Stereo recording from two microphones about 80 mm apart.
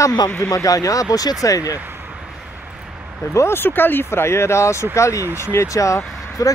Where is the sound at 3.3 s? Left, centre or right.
Left.